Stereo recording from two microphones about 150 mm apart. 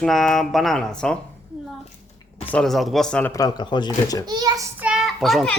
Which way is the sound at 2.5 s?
Centre (ahead or behind).